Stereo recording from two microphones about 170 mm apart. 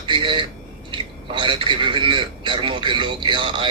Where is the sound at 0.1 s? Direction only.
30° right (ahead or behind).